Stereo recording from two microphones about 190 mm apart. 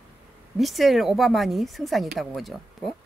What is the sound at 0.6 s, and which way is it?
Speech, centre (ahead or behind).